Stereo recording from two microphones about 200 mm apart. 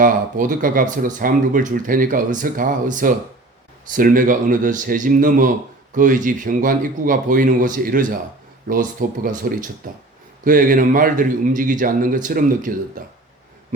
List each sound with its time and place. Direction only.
0.0 s a man's voice: 40° right (ahead or behind)